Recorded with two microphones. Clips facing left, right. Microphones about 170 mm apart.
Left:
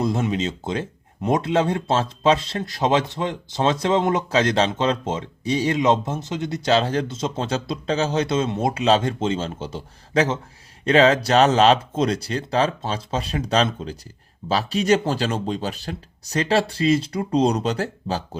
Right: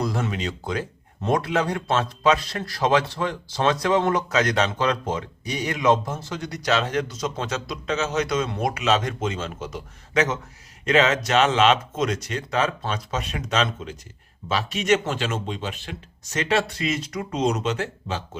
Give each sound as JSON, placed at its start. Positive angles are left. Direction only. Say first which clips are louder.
{"t": 0.0, "sound": "speech", "louder": "left 4 dB", "side_deg": 20}